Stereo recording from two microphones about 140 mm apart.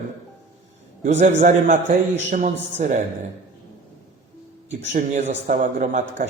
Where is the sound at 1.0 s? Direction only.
60° right (ahead or behind).